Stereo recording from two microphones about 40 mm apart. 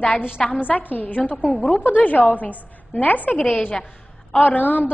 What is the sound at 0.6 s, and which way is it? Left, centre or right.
Speech, left.